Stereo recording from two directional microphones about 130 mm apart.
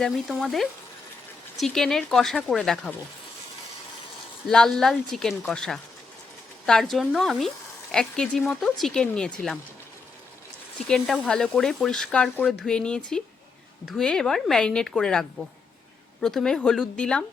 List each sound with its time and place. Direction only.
0.0 s a woman's voice: centre (ahead or behind)
4.4 s a woman's voice: 5° left (ahead or behind)
10.8 s a woman's voice: 5° left (ahead or behind)